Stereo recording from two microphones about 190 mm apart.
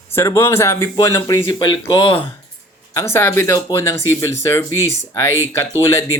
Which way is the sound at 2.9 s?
15° left (ahead or behind).